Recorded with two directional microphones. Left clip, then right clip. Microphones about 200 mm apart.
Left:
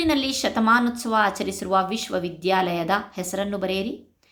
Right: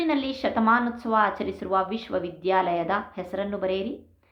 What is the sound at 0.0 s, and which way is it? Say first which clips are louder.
A woman's voice: left 3 dB; 30° left (ahead or behind).